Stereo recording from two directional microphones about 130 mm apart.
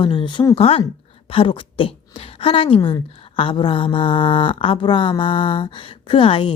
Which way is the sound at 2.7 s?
30° left (ahead or behind).